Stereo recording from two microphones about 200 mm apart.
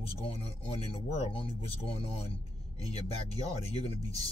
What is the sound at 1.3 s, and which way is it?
Speech, 30° left (ahead or behind).